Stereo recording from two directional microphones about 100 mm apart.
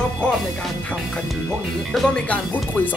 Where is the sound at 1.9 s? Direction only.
10° left (ahead or behind).